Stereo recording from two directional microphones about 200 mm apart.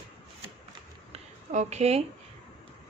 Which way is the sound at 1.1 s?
35° right (ahead or behind).